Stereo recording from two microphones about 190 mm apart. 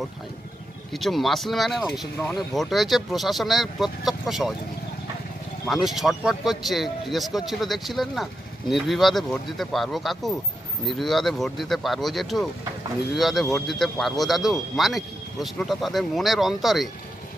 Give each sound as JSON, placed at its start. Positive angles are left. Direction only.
{"t": 0.9, "sound": "speech", "side_deg": 0}
{"t": 5.7, "sound": "speech", "side_deg": 0}